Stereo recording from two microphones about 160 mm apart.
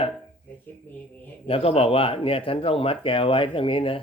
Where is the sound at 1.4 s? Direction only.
35° left (ahead or behind).